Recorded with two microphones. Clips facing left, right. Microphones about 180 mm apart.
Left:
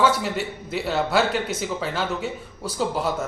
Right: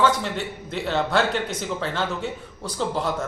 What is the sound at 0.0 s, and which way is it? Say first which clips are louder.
A man's voice: left 1 dB; 5° left (ahead or behind).